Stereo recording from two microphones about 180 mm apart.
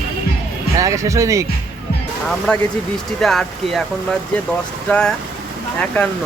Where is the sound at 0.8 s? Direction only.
15° right (ahead or behind).